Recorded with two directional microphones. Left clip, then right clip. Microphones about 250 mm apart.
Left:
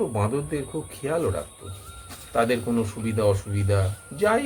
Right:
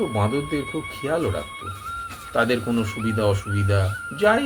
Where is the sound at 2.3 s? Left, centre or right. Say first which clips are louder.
Right 1 dB; centre.